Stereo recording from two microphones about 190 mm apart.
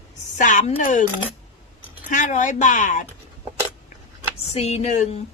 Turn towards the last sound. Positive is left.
turn(degrees=35)  # may be behind; listen again after turning